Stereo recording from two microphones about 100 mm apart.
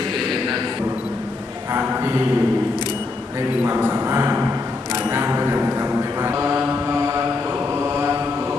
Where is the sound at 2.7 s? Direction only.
45° left (ahead or behind).